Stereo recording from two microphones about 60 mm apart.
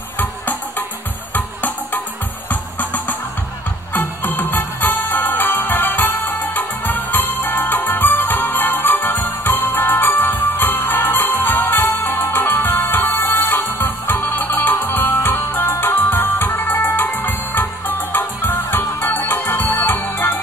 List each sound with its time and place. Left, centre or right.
0.2 s music: left
19.5 s music: left
19.8 s music: left